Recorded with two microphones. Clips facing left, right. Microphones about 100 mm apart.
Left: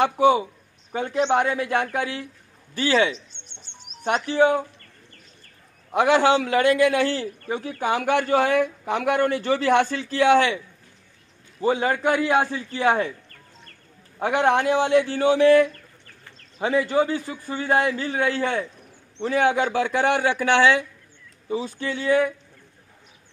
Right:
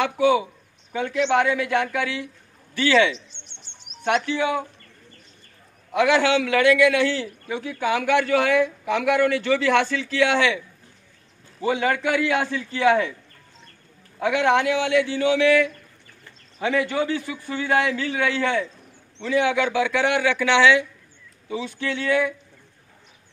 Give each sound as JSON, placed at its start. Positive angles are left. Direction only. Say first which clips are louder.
{"t": 0.0, "sound": "a man's voice", "louder": "left 1 dB", "side_deg": 35}
{"t": 5.9, "sound": "a man's voice", "louder": "left 1 dB", "side_deg": 35}
{"t": 11.6, "sound": "a man's voice", "louder": "left 1 dB", "side_deg": 35}
{"t": 14.2, "sound": "a man's voice", "louder": "even", "side_deg": 35}